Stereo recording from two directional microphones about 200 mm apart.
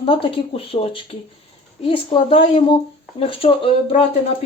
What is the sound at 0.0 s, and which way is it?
A woman's voice, 25° left (ahead or behind).